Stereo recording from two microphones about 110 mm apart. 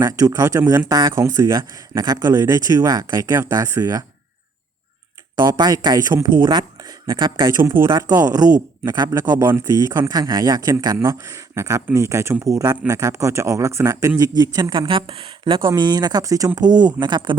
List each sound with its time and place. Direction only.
0.0 s speech: 30° right (ahead or behind)
1.2 s a man's voice: 25° right (ahead or behind)
1.9 s speech: 35° right (ahead or behind)
5.5 s a man's voice: 40° right (ahead or behind)
15.6 s speech: 40° right (ahead or behind)